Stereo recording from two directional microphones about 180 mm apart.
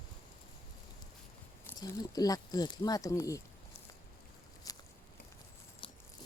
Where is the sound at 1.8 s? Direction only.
20° left (ahead or behind).